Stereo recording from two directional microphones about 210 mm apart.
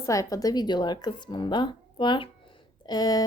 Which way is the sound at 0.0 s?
15° left (ahead or behind).